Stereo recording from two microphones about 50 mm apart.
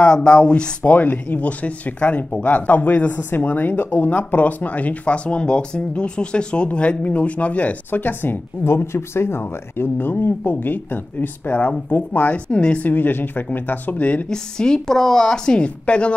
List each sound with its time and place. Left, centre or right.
0.0 s speech: centre
0.9 s speech: left
8.6 s speech: left
12.4 s speech: left
12.8 s speech: left
14.3 s a woman's voice: centre